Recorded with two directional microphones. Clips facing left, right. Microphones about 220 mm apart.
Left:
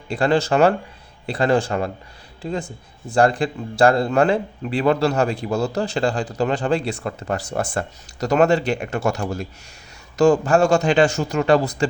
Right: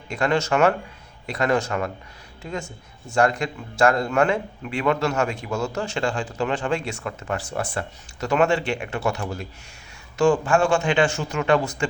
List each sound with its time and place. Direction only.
0.1 s speech: 35° left (ahead or behind)